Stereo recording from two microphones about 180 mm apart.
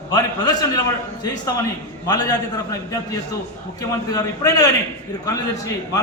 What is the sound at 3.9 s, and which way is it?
Speech, 20° left (ahead or behind).